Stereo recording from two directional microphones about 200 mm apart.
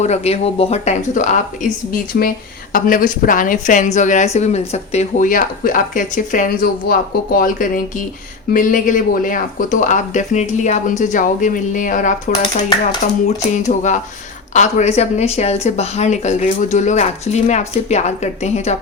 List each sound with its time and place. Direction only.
0.0 s speech: 30° left (ahead or behind)